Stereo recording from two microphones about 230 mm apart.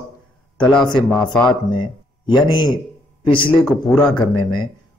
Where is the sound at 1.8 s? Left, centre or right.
Centre.